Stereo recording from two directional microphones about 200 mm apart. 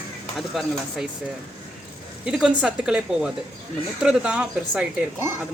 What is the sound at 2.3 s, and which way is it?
Speech, 5° right (ahead or behind).